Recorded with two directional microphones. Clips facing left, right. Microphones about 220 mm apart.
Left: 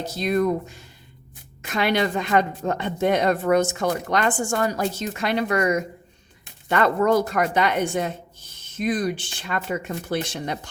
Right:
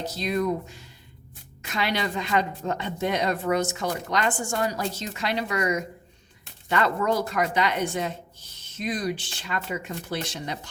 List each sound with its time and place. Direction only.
0.2 s a woman's voice: 50° left (ahead or behind)